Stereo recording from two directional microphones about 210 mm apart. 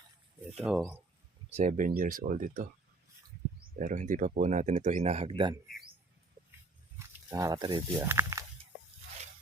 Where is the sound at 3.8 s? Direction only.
40° right (ahead or behind).